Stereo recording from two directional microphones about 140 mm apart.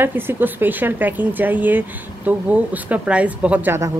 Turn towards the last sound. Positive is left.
turn(degrees=-15)  # may be behind; listen again after turning